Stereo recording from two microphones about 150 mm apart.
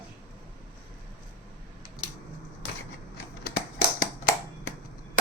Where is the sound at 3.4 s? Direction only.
90° left.